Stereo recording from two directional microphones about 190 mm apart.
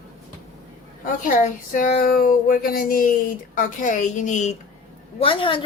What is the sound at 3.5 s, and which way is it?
Speech, 40° left (ahead or behind).